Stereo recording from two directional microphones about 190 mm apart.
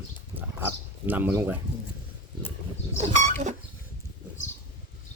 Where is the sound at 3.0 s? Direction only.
35° right (ahead or behind).